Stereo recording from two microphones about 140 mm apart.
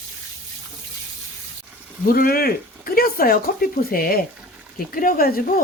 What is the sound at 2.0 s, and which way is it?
Speech, 90° left.